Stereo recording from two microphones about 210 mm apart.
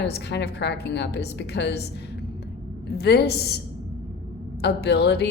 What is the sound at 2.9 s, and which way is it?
Speech, 50° left (ahead or behind).